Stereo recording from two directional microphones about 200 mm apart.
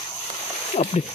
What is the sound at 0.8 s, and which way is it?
Speech, 30° left (ahead or behind).